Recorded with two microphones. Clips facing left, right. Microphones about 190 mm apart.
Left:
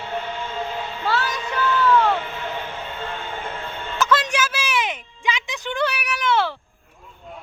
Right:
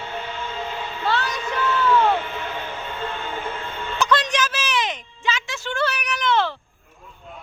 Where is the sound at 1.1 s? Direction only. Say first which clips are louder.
Left 1 dB; 5° left (ahead or behind).